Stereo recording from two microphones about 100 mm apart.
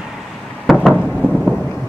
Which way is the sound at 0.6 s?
Centre (ahead or behind).